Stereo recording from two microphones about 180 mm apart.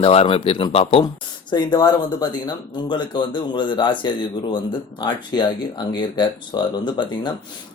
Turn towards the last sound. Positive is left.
turn(degrees=25)  # may be behind; listen again after turning